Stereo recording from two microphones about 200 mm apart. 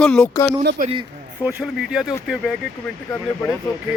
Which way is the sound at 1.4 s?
5° right (ahead or behind).